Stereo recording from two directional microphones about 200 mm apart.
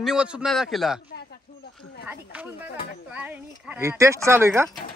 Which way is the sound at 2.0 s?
10° right (ahead or behind).